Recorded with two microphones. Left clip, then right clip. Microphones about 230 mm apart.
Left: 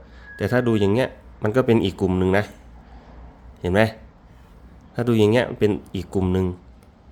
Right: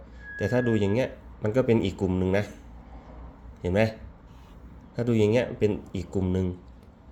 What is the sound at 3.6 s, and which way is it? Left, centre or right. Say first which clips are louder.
Speech: left 5 dB; left.